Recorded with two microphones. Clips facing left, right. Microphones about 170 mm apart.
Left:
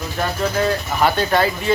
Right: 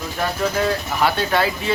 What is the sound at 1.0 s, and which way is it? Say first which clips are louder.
Speech: left 2 dB; centre (ahead or behind).